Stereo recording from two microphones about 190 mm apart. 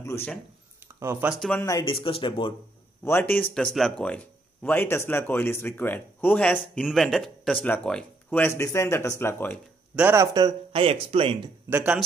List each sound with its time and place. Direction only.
0.0 s speech: 10° left (ahead or behind)
0.9 s speech: 15° right (ahead or behind)
1.3 s speech: centre (ahead or behind)
1.6 s speech: 20° left (ahead or behind)
3.0 s speech: 10° left (ahead or behind)
9.9 s speech: 10° right (ahead or behind); by 11.5 s 30° right (ahead or behind)
11.7 s speech: 5° right (ahead or behind)